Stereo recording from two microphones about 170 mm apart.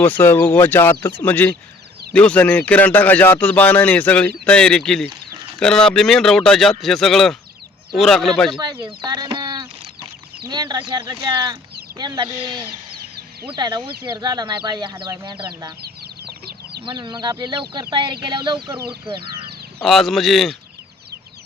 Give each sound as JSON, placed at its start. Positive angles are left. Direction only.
{"t": 0.0, "sound": "a man's voice", "side_deg": 10}
{"t": 9.0, "sound": "chicken", "side_deg": -25}
{"t": 11.1, "sound": "speech", "side_deg": -25}
{"t": 15.8, "sound": "chicken", "side_deg": -70}
{"t": 16.8, "sound": "speech", "side_deg": -30}
{"t": 19.8, "sound": "a man's voice", "side_deg": 0}